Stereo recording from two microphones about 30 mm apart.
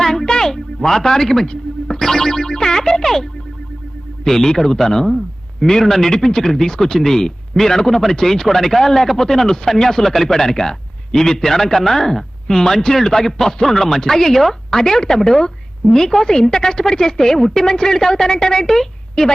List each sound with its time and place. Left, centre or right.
0.0 s a sound: centre
0.5 s speech: centre
4.3 s a woman's voice: centre